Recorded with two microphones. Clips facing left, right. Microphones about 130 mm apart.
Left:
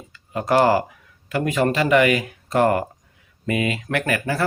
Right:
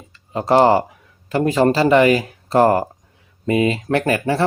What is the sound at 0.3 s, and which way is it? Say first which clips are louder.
Speech: right 4 dB; 30° right (ahead or behind).